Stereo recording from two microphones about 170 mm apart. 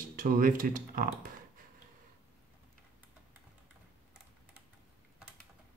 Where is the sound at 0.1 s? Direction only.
55° right (ahead or behind).